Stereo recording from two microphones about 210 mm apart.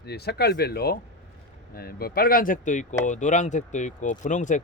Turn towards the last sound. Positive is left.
turn(degrees=35)  # may be behind; listen again after turning